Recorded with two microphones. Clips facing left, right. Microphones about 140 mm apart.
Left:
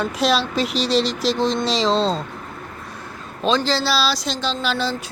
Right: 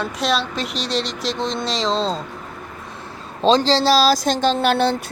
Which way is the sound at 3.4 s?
35° right (ahead or behind).